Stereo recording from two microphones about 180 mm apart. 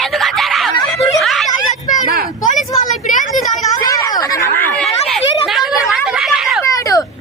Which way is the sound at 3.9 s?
20° left (ahead or behind).